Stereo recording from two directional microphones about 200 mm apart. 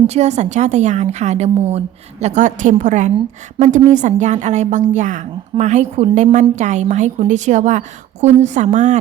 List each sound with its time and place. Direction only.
0.1 s a woman's voice: 35° right (ahead or behind)